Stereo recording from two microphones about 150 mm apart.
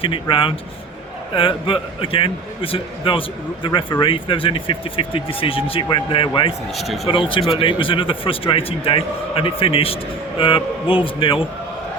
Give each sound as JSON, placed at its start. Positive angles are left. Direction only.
{"t": 0.0, "sound": "a man's voice", "side_deg": 35}
{"t": 6.7, "sound": "speech", "side_deg": 0}
{"t": 7.1, "sound": "a man's voice", "side_deg": 35}